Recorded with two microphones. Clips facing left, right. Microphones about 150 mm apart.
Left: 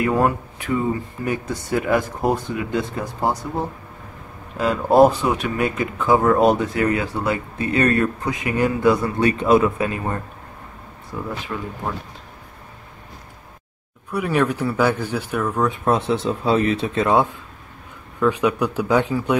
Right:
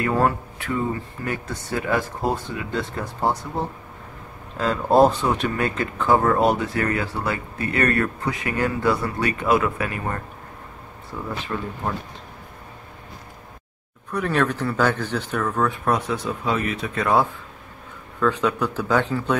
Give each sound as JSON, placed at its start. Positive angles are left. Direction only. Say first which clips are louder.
{"t": 0.0, "sound": "speech", "louder": "left 2 dB", "side_deg": 15}
{"t": 4.6, "sound": "speech", "louder": "left 2 dB", "side_deg": 10}
{"t": 11.5, "sound": "speech", "louder": "right 2 dB", "side_deg": 0}
{"t": 14.1, "sound": "speech", "louder": "left 2 dB", "side_deg": 10}